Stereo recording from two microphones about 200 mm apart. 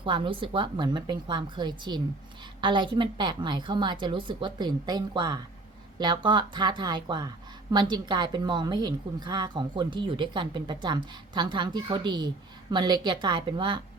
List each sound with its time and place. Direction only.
0.0 s a woman's voice: 25° right (ahead or behind)